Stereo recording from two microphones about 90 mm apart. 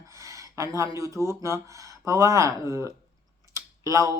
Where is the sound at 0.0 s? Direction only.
35° right (ahead or behind).